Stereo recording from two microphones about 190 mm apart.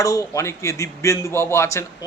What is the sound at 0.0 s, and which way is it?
Speech, 15° left (ahead or behind).